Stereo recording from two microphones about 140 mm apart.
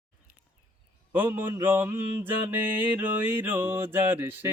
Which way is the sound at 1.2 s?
15° right (ahead or behind).